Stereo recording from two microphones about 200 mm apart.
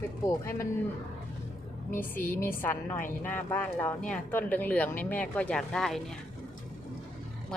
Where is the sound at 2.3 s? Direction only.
10° left (ahead or behind).